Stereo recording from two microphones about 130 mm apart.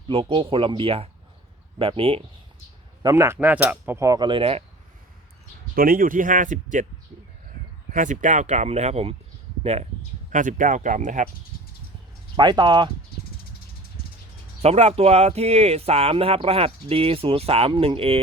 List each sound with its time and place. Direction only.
0.1 s speech: 40° right (ahead or behind)
3.0 s a sound: 25° right (ahead or behind)
3.4 s a sound: 15° right (ahead or behind); by 4.6 s 45° right (ahead or behind)
5.7 s speech: 90° right
7.9 s speech: 80° right; by 9.9 s 55° right (ahead or behind)
10.3 s speech: 80° right
12.4 s speech: 35° right (ahead or behind)
14.6 s speech: 55° right (ahead or behind)